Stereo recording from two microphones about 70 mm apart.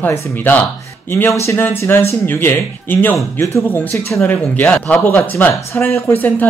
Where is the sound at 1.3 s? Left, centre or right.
Left.